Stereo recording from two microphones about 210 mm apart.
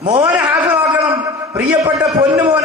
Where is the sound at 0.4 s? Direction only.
20° right (ahead or behind).